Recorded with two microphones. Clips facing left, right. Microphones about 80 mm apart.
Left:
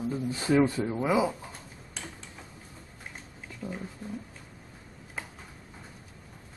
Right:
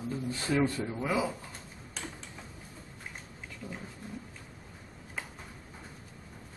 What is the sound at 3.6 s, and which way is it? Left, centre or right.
Speech, centre.